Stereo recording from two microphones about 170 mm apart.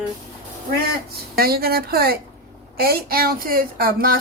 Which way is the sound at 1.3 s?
65° right (ahead or behind).